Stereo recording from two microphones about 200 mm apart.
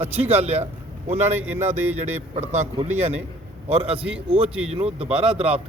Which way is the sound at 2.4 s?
35° right (ahead or behind).